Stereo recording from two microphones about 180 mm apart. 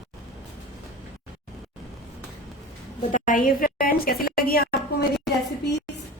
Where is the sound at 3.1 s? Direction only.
50° left (ahead or behind).